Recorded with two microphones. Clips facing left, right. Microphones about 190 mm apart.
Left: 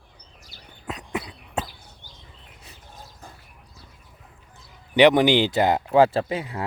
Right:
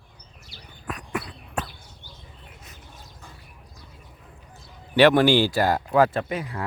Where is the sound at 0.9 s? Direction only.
20° left (ahead or behind).